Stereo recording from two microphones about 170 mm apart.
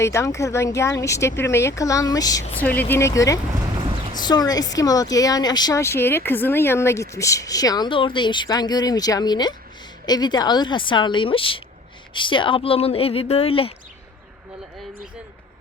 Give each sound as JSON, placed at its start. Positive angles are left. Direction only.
{"t": 0.0, "sound": "speech", "side_deg": 15}
{"t": 2.6, "sound": "speech", "side_deg": 10}